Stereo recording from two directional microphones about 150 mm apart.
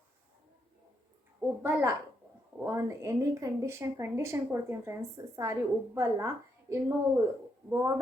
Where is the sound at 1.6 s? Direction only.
15° right (ahead or behind).